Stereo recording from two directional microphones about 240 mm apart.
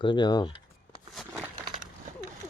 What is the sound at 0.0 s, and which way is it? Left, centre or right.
Speech, centre.